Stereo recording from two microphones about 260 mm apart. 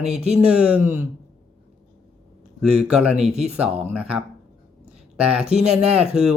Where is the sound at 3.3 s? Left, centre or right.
Right.